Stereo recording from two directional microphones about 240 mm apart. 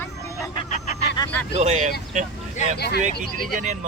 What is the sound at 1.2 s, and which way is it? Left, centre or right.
Vehicle, centre.